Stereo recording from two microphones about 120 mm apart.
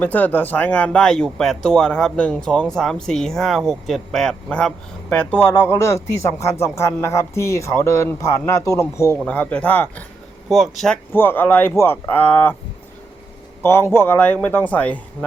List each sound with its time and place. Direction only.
0.0 s speech: 15° left (ahead or behind)
9.1 s speech: 10° left (ahead or behind)
10.5 s speech: centre (ahead or behind)
11.1 s speech: 15° left (ahead or behind)
13.6 s speech: 20° left (ahead or behind)